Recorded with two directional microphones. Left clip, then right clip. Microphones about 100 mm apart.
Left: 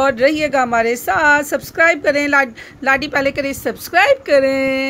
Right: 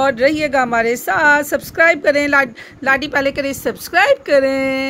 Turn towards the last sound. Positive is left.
turn(degrees=-20)  # may be behind; listen again after turning